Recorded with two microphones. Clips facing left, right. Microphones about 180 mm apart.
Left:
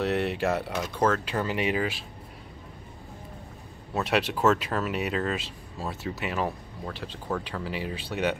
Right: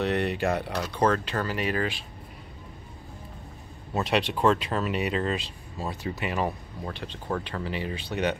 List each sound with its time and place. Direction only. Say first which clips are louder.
0.0 s speech: even; 5° left (ahead or behind)
1.5 s speech: left 3 dB; 20° left (ahead or behind)
1.8 s speech: even; 5° left (ahead or behind)
3.9 s speech: even; 5° left (ahead or behind)